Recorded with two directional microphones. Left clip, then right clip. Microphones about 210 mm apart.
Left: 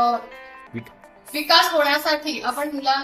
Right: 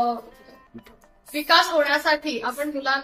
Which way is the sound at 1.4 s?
40° right (ahead or behind).